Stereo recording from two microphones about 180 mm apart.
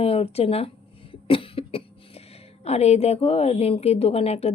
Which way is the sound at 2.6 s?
35° left (ahead or behind).